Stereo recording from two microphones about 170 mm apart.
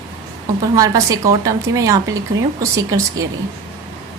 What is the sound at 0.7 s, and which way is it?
Speech, 20° right (ahead or behind).